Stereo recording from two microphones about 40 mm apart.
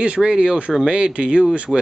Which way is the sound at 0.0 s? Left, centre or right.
Right.